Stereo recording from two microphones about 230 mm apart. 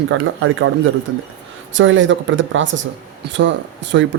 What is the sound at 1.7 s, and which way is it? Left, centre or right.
Speech, right.